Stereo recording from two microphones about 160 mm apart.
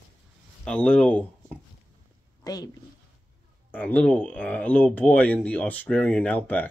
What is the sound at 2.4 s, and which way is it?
Speech, 25° left (ahead or behind).